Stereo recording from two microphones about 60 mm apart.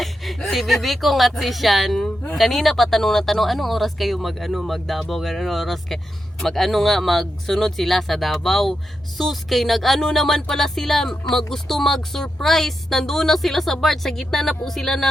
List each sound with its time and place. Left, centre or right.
0.0 s speech: centre